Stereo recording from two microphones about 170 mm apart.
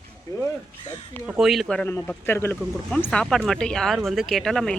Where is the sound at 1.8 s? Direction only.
15° left (ahead or behind).